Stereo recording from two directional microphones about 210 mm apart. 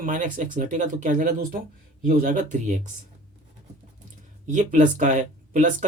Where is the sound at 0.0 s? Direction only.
40° right (ahead or behind).